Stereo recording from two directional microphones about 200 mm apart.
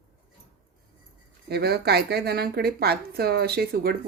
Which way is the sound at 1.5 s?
55° right (ahead or behind).